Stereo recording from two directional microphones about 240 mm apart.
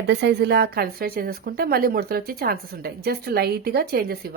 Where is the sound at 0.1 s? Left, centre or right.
Right.